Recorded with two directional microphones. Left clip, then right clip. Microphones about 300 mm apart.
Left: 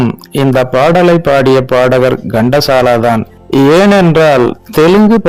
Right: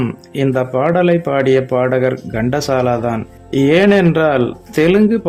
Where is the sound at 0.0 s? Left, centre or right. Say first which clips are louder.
Left 6 dB; left.